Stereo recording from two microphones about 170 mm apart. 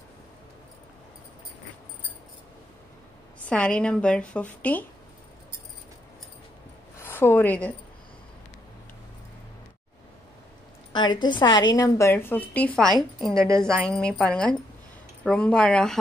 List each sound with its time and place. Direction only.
3.4 s a woman's voice: 5° left (ahead or behind)
7.0 s a woman's voice: 15° left (ahead or behind)
10.9 s a woman's voice: 25° left (ahead or behind); by 16.0 s 5° left (ahead or behind)